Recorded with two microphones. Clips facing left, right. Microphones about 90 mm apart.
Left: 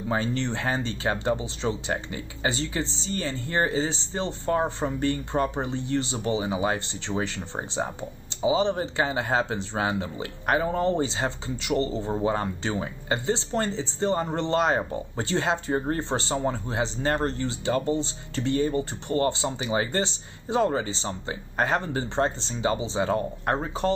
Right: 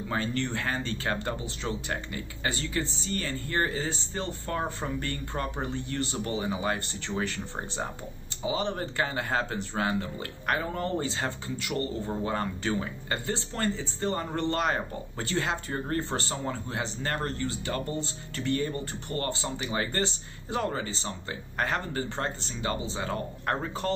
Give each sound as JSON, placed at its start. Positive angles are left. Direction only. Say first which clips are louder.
{"t": 0.1, "sound": "speech", "louder": "left 4 dB", "side_deg": 20}